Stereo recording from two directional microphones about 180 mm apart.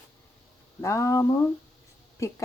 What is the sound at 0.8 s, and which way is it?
Speech, 15° left (ahead or behind).